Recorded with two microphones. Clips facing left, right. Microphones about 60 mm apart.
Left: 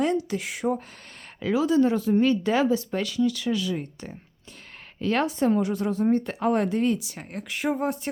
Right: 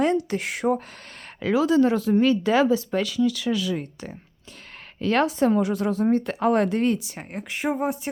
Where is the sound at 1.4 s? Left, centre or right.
Right.